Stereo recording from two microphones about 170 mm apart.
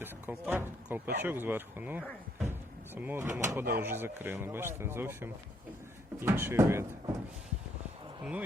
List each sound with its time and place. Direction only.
0.0 s speech: 10° right (ahead or behind)
2.5 s door: 10° right (ahead or behind)
3.8 s speech: 10° right (ahead or behind)
8.2 s speech: 10° right (ahead or behind)